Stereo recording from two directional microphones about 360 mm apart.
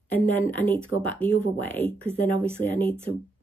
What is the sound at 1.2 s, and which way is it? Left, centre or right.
Speech, centre.